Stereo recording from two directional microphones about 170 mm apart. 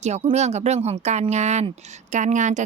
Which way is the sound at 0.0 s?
40° right (ahead or behind).